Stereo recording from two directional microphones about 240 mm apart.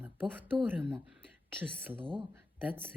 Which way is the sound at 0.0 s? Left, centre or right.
Centre.